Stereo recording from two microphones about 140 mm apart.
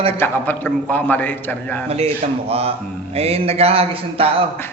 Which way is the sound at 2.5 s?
45° right (ahead or behind).